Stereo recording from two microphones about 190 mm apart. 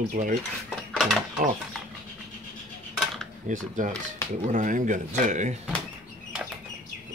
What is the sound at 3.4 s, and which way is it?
Speech, 45° right (ahead or behind).